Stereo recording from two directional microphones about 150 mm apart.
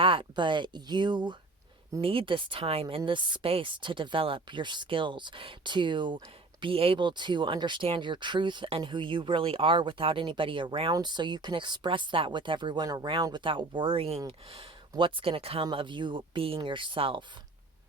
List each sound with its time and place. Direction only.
0.0 s speech: 35° right (ahead or behind)